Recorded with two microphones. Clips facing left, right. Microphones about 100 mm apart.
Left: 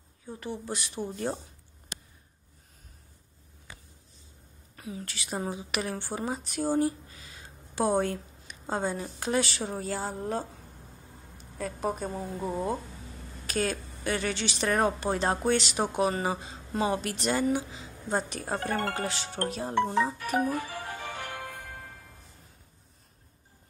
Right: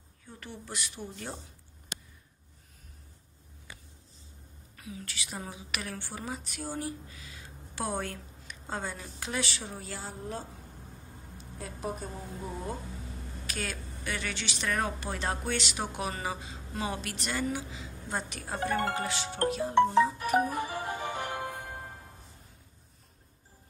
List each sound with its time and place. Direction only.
0.3 s speech: 20° left (ahead or behind)
4.7 s speech: 35° left (ahead or behind)
7.7 s a woman's voice: 25° left (ahead or behind); by 10.4 s 55° left (ahead or behind)
11.5 s speech: 60° left (ahead or behind)
12.1 s speech: 35° left (ahead or behind)
20.2 s music: 25° right (ahead or behind)